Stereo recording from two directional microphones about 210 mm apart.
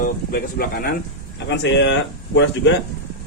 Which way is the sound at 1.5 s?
55° left (ahead or behind).